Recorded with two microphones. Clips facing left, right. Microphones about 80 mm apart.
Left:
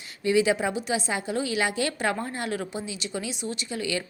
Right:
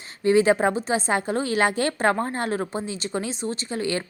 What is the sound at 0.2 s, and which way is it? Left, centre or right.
A woman's voice, right.